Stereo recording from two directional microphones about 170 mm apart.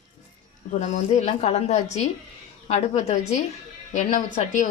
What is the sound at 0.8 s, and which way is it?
A woman's voice, 40° left (ahead or behind).